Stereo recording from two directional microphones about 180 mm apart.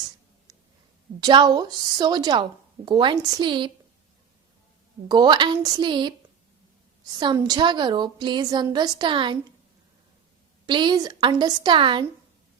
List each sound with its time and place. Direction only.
0.5 s a sound: 20° right (ahead or behind)
1.2 s a woman's voice: 25° right (ahead or behind)
5.0 s a woman's voice: 25° right (ahead or behind)
7.2 s a woman's voice: 25° right (ahead or behind)
10.7 s a woman's voice: 25° right (ahead or behind)